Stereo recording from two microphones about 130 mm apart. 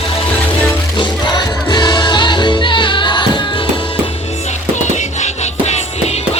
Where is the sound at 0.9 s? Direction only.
35° left (ahead or behind).